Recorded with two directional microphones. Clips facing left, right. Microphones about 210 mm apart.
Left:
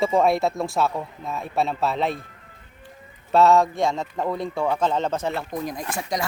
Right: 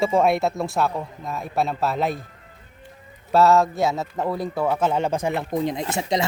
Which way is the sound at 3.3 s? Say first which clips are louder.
Even; centre (ahead or behind).